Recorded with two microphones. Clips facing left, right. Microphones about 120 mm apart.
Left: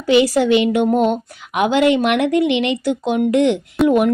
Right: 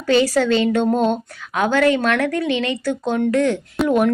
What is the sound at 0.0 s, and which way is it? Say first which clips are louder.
A woman's voice: left 2 dB; 15° left (ahead or behind).